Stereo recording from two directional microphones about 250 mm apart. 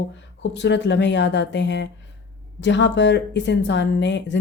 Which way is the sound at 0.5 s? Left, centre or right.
Left.